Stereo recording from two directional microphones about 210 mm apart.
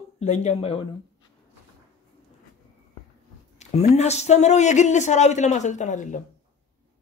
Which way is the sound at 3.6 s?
30° left (ahead or behind).